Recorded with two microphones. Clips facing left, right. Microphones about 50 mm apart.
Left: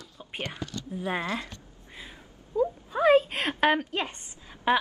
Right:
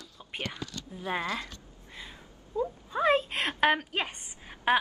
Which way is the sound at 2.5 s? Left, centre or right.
Centre.